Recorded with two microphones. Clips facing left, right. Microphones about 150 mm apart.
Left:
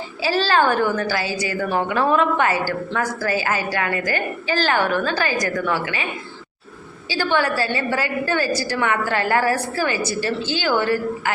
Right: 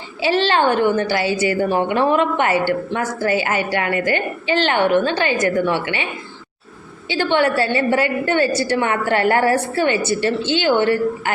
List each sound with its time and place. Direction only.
0.2 s a woman's voice: 25° right (ahead or behind)
7.1 s a woman's voice: 25° right (ahead or behind)